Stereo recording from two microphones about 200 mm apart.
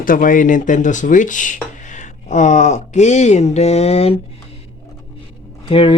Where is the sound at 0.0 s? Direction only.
45° left (ahead or behind).